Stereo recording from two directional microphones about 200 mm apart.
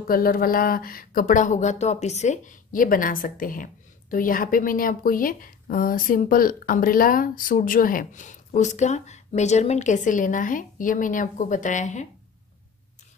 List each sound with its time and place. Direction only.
0.1 s speech: 45° left (ahead or behind)